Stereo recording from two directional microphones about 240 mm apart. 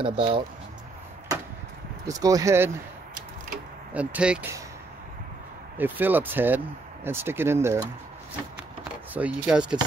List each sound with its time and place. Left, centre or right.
0.0 s speech: right
2.0 s speech: centre
3.9 s speech: centre
5.8 s speech: centre
9.1 s speech: centre